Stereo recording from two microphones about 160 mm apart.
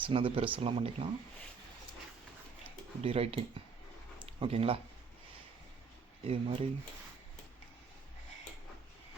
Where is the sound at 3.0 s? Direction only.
40° right (ahead or behind).